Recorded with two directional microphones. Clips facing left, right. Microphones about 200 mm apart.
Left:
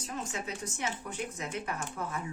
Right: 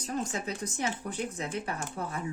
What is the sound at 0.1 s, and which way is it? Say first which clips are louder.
Speech: right 5 dB; 35° right (ahead or behind).